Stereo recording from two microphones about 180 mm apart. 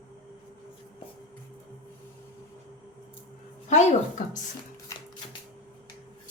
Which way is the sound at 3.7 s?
45° left (ahead or behind).